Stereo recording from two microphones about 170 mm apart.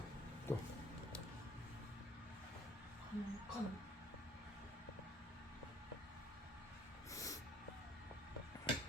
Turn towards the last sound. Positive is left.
turn(degrees=20)  # may be behind; listen again after turning